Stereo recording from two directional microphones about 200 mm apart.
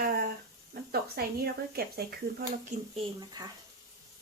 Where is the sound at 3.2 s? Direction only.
20° right (ahead or behind).